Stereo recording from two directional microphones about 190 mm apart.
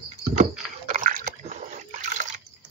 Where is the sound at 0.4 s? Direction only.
40° right (ahead or behind).